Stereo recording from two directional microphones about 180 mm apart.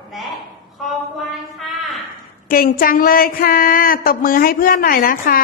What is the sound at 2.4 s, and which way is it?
Speech, 55° left (ahead or behind).